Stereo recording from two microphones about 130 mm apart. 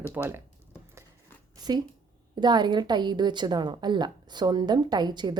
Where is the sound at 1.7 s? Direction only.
30° right (ahead or behind).